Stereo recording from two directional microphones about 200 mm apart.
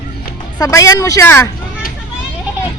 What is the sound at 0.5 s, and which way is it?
Speech, 15° left (ahead or behind).